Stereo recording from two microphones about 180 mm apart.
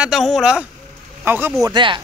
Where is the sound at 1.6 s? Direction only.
25° right (ahead or behind).